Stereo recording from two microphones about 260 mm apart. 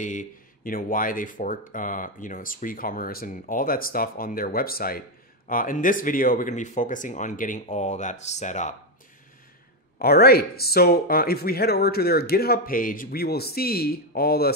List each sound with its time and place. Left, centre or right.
0.0 s speech: left
9.9 s speech: left